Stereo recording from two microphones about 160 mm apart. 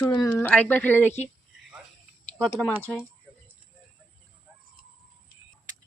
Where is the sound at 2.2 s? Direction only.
5° left (ahead or behind).